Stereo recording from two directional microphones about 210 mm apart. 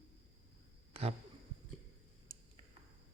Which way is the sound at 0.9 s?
30° right (ahead or behind).